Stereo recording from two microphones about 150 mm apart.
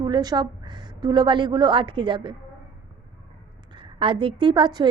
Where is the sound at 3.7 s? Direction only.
35° right (ahead or behind).